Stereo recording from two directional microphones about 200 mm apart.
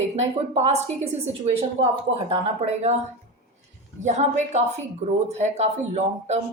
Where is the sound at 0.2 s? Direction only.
35° right (ahead or behind).